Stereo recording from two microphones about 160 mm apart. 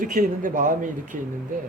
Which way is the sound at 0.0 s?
55° right (ahead or behind).